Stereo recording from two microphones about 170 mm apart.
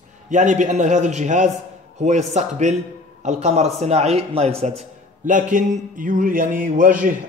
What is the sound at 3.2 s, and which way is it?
A man's voice, 40° right (ahead or behind).